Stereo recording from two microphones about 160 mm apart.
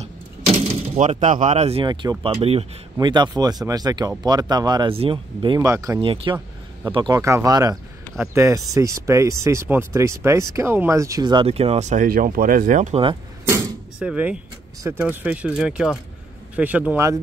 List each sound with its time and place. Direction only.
0.6 s a sound: 50° right (ahead or behind)
1.2 s speech: 50° right (ahead or behind); by 5.6 s 30° right (ahead or behind)
5.6 s speech: 20° right (ahead or behind)
5.9 s speech: 35° right (ahead or behind)
12.1 s speech: 60° right (ahead or behind)
13.9 s speech: 10° right (ahead or behind)